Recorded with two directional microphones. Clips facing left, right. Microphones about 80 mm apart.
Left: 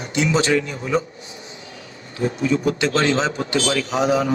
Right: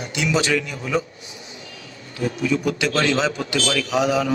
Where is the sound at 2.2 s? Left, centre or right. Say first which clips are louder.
Left 2 dB; left.